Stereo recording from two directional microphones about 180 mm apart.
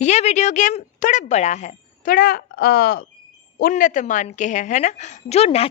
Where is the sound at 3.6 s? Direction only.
45° left (ahead or behind).